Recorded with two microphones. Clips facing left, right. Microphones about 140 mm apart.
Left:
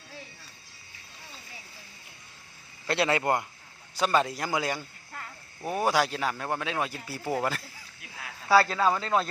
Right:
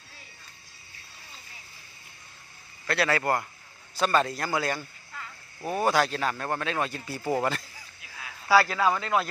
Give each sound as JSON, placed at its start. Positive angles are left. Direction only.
{"t": 2.8, "sound": "a man's voice", "side_deg": 25}
{"t": 5.1, "sound": "cricket", "side_deg": 50}
{"t": 5.6, "sound": "speech", "side_deg": 10}
{"t": 8.5, "sound": "a man's voice", "side_deg": 25}